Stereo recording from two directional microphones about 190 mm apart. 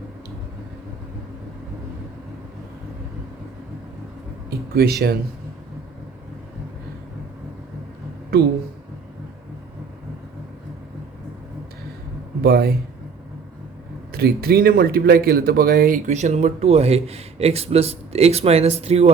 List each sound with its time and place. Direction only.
4.4 s a sound: 55° right (ahead or behind)
12.4 s speech: 55° right (ahead or behind)
14.1 s speech: 55° right (ahead or behind); by 19.1 s 30° right (ahead or behind)